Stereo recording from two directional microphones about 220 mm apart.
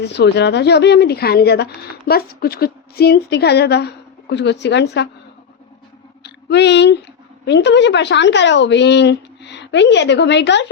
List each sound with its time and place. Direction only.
0.0 s a woman's voice: 50° left (ahead or behind)
6.2 s a woman's voice: 50° left (ahead or behind)